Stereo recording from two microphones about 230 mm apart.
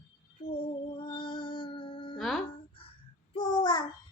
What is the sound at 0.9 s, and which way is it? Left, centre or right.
Music, left.